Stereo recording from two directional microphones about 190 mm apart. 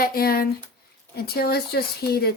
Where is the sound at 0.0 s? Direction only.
50° left (ahead or behind).